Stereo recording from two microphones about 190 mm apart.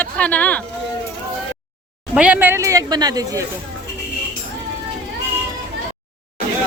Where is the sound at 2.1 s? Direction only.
5° right (ahead or behind).